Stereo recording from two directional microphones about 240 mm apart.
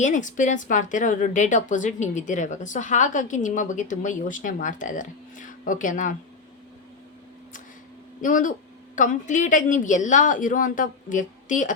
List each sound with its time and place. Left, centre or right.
0.0 s a woman's voice: left
8.2 s a woman's voice: left